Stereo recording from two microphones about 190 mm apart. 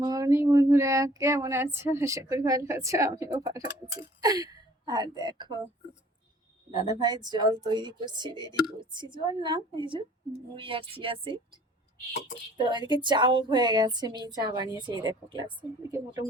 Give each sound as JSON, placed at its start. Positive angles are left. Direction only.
{"t": 0.0, "sound": "female singing", "side_deg": -20}
{"t": 4.2, "sound": "a woman's voice", "side_deg": -20}
{"t": 6.7, "sound": "a woman's voice", "side_deg": -20}